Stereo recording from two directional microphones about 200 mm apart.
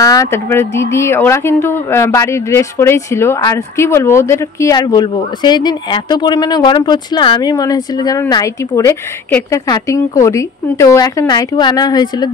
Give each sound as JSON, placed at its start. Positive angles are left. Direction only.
{"t": 0.0, "sound": "speech", "side_deg": 15}